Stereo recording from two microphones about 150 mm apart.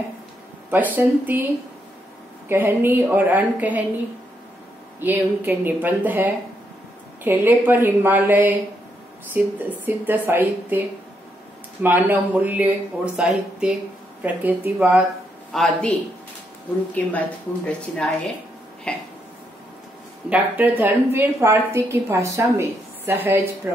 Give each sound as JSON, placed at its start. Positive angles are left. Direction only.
{"t": 0.7, "sound": "a woman's voice", "side_deg": -10}
{"t": 2.4, "sound": "a woman's voice", "side_deg": -15}
{"t": 5.0, "sound": "a woman's voice", "side_deg": -15}
{"t": 15.5, "sound": "a man's voice", "side_deg": 0}
{"t": 17.6, "sound": "speech", "side_deg": 5}
{"t": 20.2, "sound": "a woman's voice", "side_deg": -10}